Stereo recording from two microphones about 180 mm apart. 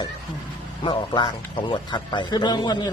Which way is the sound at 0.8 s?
30° left (ahead or behind).